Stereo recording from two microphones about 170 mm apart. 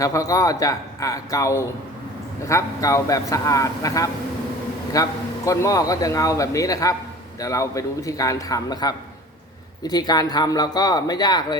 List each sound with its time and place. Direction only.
0.0 s a man's voice: 20° left (ahead or behind)